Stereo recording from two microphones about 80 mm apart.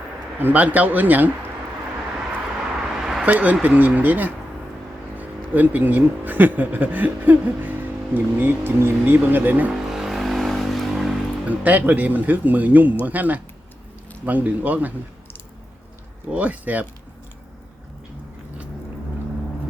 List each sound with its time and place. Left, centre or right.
0.3 s speech: right
3.0 s a sound: centre
3.2 s speech: right
9.7 s vehicle: centre
11.4 s speech: centre
16.3 s speech: centre